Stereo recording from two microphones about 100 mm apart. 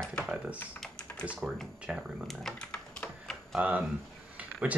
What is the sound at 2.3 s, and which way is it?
Typing, 5° left (ahead or behind).